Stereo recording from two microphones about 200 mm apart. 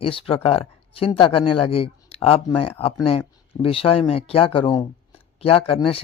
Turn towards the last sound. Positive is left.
turn(degrees=30)  # may be behind; listen again after turning